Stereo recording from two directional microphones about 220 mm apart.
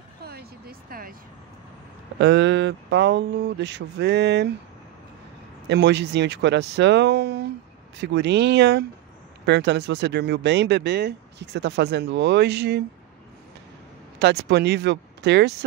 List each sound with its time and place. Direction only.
0.2 s a sound: 45° right (ahead or behind)
2.1 s speech: 50° right (ahead or behind)
5.7 s speech: 50° right (ahead or behind)
14.2 s speech: 50° right (ahead or behind)